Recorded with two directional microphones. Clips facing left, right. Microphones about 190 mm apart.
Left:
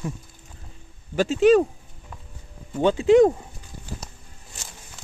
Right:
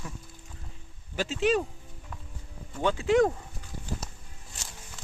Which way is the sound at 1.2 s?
45° left (ahead or behind).